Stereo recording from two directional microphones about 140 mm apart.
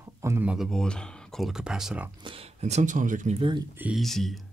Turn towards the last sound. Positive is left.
turn(degrees=0)  # may be behind; listen again after turning